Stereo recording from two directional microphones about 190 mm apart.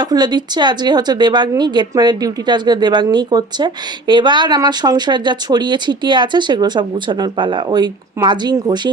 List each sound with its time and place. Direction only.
0.0 s a woman's voice: 20° right (ahead or behind)